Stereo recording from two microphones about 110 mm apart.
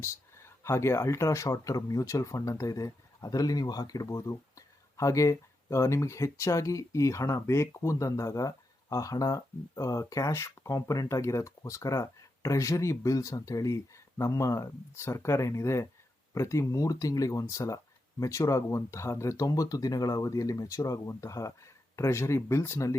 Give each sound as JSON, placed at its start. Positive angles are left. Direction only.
{"t": 0.0, "sound": "speech", "side_deg": 25}